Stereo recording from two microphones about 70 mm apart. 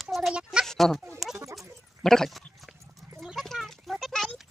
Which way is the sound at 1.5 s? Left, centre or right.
Centre.